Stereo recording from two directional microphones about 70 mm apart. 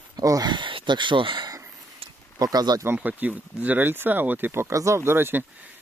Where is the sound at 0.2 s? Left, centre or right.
Right.